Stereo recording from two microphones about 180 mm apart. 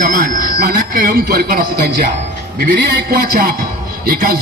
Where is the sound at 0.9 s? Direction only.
55° right (ahead or behind).